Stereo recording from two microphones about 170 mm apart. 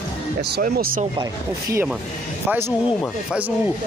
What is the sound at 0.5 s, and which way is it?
Speech, 60° right (ahead or behind).